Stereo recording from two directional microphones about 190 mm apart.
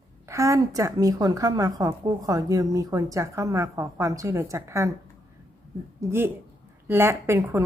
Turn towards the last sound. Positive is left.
turn(degrees=-15)  # may be behind; listen again after turning